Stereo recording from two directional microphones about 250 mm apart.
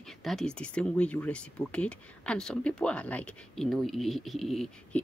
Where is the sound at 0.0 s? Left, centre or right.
Centre.